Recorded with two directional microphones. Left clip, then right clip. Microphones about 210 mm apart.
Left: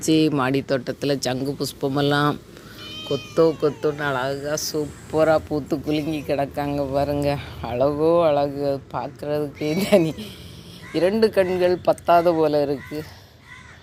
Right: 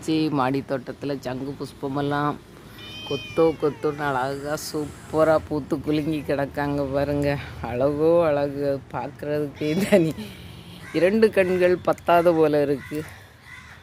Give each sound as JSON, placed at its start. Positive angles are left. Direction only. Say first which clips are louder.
{"t": 0.0, "sound": "speech", "louder": "left 3 dB", "side_deg": 10}
{"t": 0.9, "sound": "speech", "louder": "left 6 dB", "side_deg": 20}